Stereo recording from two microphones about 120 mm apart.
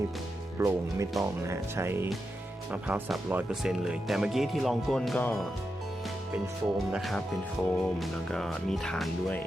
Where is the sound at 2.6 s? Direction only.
10° right (ahead or behind); by 5.2 s 5° left (ahead or behind).